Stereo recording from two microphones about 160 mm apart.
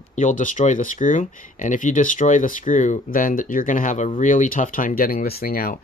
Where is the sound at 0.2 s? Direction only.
50° left (ahead or behind).